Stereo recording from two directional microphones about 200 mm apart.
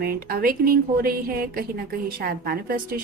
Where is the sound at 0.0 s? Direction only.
50° right (ahead or behind).